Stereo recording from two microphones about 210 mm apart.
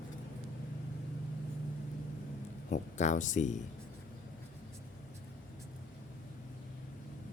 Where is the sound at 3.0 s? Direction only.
35° left (ahead or behind).